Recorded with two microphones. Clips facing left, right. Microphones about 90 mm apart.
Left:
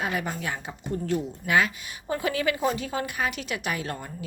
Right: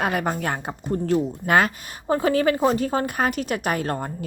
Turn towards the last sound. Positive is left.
turn(degrees=-45)  # may be behind; listen again after turning